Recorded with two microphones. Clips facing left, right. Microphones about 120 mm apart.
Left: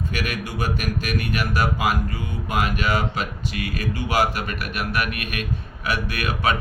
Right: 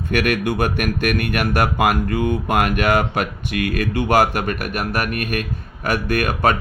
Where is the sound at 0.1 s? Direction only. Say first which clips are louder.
Right 9 dB; 60° right (ahead or behind).